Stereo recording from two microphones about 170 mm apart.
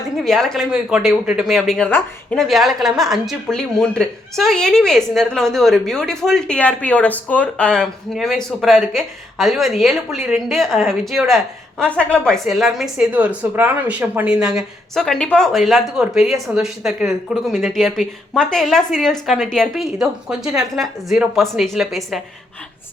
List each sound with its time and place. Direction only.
0.2 s a woman's voice: centre (ahead or behind)